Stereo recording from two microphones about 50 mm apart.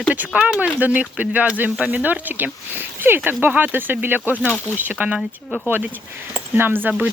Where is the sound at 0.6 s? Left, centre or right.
Right.